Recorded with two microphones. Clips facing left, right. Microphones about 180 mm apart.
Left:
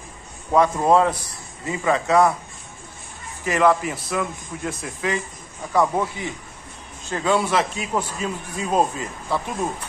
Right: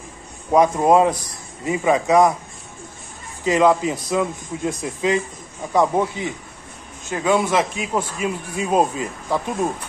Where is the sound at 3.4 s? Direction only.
15° right (ahead or behind).